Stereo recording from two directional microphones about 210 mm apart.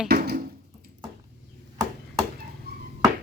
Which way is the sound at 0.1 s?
45° right (ahead or behind).